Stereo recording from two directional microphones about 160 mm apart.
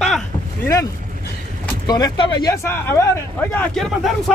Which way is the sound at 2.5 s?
15° left (ahead or behind).